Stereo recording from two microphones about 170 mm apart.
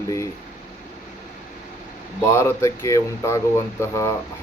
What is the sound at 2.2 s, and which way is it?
Speech, 15° left (ahead or behind).